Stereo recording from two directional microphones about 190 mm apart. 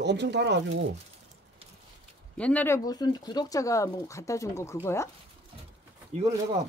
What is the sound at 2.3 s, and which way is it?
Speech, 5° left (ahead or behind).